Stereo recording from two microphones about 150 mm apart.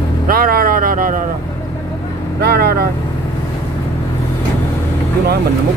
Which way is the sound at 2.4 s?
90° right.